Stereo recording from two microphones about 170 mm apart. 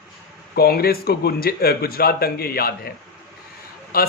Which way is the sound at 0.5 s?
65° left (ahead or behind).